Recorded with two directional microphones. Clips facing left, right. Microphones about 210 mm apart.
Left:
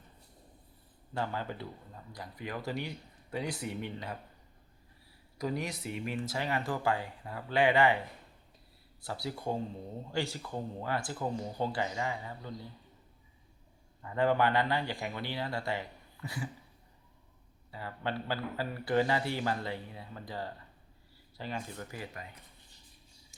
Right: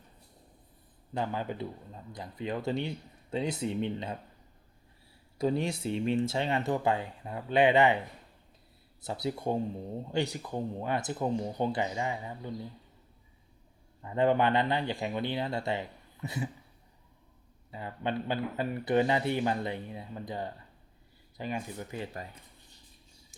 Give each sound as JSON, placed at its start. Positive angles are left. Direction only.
{"t": 1.1, "sound": "speech", "side_deg": -15}
{"t": 5.4, "sound": "speech", "side_deg": -30}
{"t": 9.0, "sound": "speech", "side_deg": -20}
{"t": 14.0, "sound": "speech", "side_deg": -20}
{"t": 17.7, "sound": "speech", "side_deg": -20}